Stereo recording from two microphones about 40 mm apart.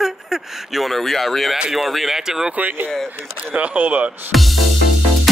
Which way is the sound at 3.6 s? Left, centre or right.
Right.